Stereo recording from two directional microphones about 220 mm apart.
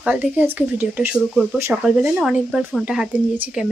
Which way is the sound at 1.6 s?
10° right (ahead or behind).